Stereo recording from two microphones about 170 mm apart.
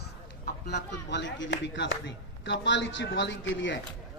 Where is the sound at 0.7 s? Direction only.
90° left.